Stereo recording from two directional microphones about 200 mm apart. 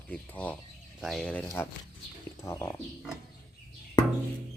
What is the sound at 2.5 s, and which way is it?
Speech, 15° left (ahead or behind).